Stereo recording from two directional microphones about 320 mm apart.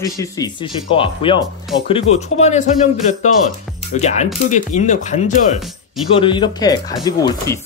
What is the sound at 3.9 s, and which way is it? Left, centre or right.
Speech, left.